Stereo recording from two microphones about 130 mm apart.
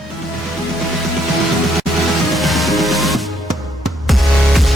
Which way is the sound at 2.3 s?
Centre (ahead or behind).